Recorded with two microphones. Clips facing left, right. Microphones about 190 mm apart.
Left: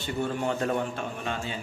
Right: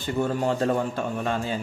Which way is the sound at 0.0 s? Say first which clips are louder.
Right 4 dB; 40° right (ahead or behind).